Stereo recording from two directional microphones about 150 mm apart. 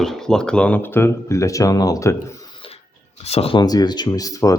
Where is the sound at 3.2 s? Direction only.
40° left (ahead or behind).